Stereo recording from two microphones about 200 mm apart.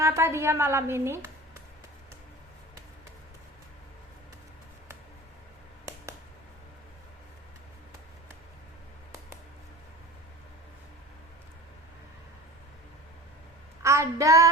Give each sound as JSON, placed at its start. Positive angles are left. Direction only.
{"t": 0.0, "sound": "a woman's voice", "side_deg": -15}
{"t": 13.8, "sound": "child singing", "side_deg": -15}